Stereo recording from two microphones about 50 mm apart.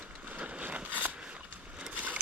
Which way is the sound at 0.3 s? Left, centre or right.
Right.